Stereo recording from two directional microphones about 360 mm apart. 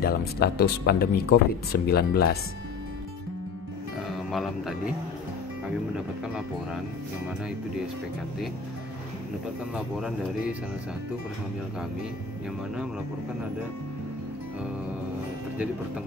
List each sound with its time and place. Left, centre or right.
0.0 s speech: left
4.1 s speech: centre
9.8 s speech: centre